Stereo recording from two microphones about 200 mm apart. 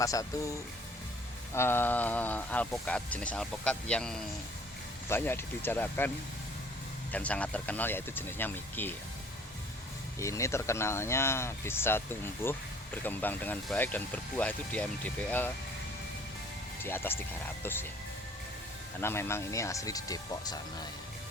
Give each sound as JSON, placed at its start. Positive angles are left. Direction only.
{"t": 0.0, "sound": "speech", "side_deg": 15}
{"t": 1.5, "sound": "speech", "side_deg": 10}
{"t": 7.1, "sound": "speech", "side_deg": 5}
{"t": 10.2, "sound": "speech", "side_deg": 15}
{"t": 16.8, "sound": "speech", "side_deg": 10}
{"t": 18.9, "sound": "speech", "side_deg": 10}